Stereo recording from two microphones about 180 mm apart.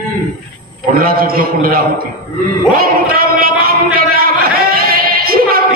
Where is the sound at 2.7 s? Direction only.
55° right (ahead or behind).